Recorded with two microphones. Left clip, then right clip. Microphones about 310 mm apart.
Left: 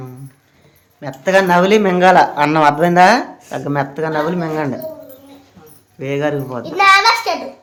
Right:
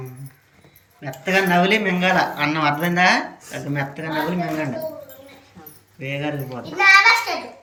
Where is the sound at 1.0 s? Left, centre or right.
Centre.